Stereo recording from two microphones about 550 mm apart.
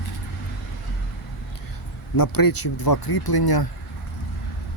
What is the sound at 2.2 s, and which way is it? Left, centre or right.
Speech, left.